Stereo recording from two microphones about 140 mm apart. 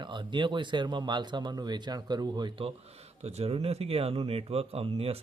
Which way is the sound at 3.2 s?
50° right (ahead or behind).